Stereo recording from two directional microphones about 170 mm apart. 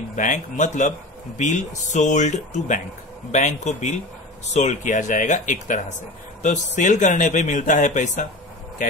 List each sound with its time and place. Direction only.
0.1 s speech: 50° left (ahead or behind)